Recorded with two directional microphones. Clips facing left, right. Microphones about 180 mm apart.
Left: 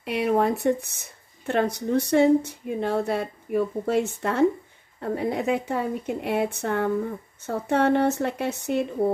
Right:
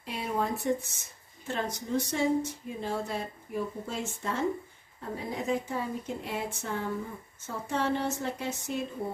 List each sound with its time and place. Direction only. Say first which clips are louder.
0.0 s speech: left 10 dB; 70° left (ahead or behind)